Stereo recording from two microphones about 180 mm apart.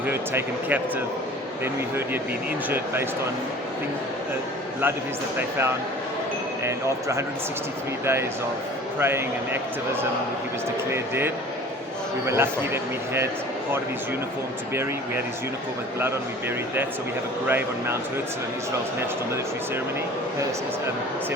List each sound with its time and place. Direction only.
0.0 s speech: 10° right (ahead or behind)
2.6 s speech: 10° right (ahead or behind)
6.7 s speech: 15° right (ahead or behind)
10.9 s speech: 15° right (ahead or behind)
17.4 s speech: 10° right (ahead or behind)